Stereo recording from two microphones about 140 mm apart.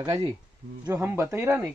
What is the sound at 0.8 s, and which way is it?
Speech, 15° right (ahead or behind).